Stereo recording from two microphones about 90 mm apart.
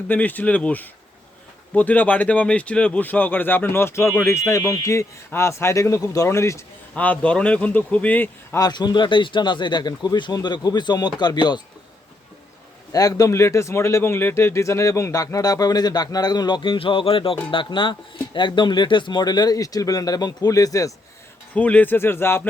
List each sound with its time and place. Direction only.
0.1 s speech: 20° left (ahead or behind)
6.9 s speech: 15° left (ahead or behind)
8.5 s speech: 50° left (ahead or behind)
12.9 s speech: 40° left (ahead or behind); by 17.3 s 80° left
17.5 s speech: 65° left (ahead or behind); by 20.9 s 40° left (ahead or behind)
21.5 s speech: 15° left (ahead or behind)